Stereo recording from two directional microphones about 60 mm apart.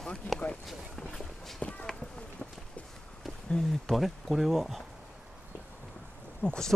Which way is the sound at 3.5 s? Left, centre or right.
Centre.